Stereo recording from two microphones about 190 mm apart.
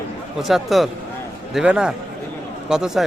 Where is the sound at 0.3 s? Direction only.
Centre (ahead or behind).